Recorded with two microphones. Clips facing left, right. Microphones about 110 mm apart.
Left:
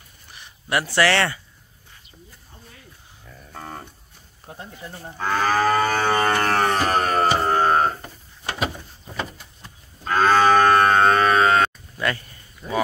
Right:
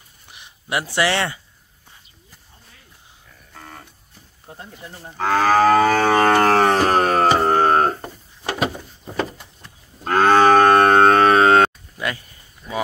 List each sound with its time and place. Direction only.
0.3 s speech: 15° right (ahead or behind)
3.5 s livestock: 40° left (ahead or behind)
5.1 s moo: 70° right (ahead or behind); by 7.2 s 90° right
7.3 s mantra: 65° right (ahead or behind)
10.0 s moo: 55° right (ahead or behind)
12.0 s a sound: 10° right (ahead or behind)
12.6 s speech: 25° left (ahead or behind)